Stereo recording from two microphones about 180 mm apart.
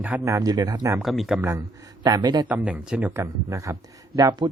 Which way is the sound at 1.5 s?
15° right (ahead or behind).